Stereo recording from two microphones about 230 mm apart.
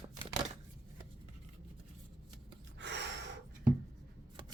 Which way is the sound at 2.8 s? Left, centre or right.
Right.